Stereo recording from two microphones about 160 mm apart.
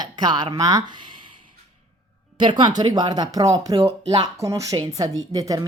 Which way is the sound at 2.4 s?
30° right (ahead or behind).